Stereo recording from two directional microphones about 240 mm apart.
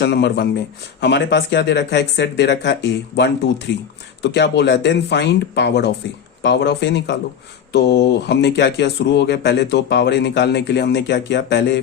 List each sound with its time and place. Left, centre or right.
0.0 s speech: left